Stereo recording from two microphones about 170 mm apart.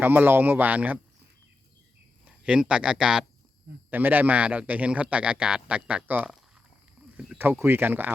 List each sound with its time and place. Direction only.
0.0 s a man's voice: 10° right (ahead or behind)
2.2 s a man's voice: 5° right (ahead or behind)